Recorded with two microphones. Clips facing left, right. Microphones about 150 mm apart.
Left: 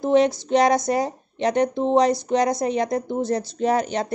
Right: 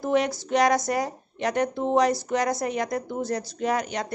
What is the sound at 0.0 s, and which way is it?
Speech, 25° left (ahead or behind).